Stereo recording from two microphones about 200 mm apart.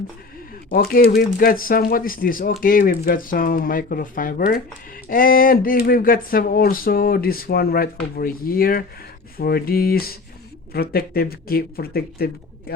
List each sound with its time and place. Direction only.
0.7 s speech: 45° left (ahead or behind)